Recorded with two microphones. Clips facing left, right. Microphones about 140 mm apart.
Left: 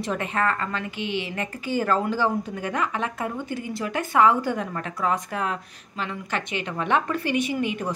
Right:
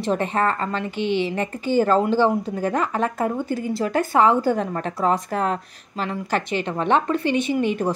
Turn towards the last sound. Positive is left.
turn(degrees=-35)  # may be behind; listen again after turning